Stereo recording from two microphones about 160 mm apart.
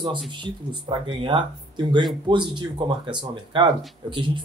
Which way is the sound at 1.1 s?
30° right (ahead or behind).